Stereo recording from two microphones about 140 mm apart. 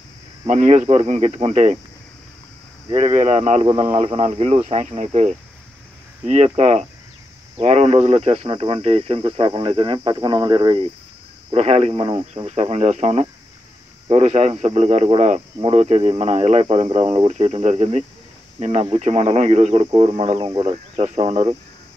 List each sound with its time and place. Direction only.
0.5 s speech: 55° right (ahead or behind)
2.9 s speech: 55° right (ahead or behind)
11.9 s speech: 35° right (ahead or behind)
12.4 s speech: 50° right (ahead or behind)
19.8 s speech: 40° right (ahead or behind)
20.6 s speech: 45° right (ahead or behind)